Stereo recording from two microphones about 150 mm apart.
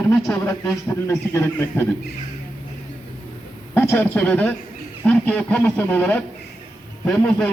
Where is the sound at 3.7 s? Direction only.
15° left (ahead or behind).